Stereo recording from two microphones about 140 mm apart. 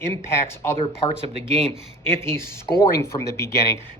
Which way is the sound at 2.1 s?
15° left (ahead or behind).